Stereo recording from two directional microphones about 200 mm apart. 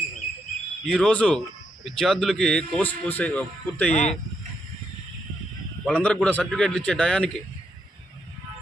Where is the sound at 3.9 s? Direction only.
35° left (ahead or behind).